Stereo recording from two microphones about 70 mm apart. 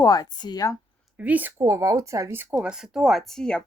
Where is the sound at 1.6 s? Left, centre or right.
Right.